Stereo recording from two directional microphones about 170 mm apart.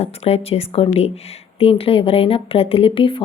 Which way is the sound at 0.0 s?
35° left (ahead or behind).